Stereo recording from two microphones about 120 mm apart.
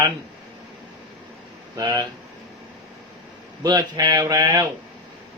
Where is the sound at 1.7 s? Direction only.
30° right (ahead or behind).